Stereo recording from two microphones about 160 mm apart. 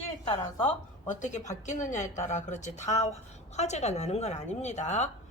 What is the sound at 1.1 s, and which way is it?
A woman's voice, 50° left (ahead or behind).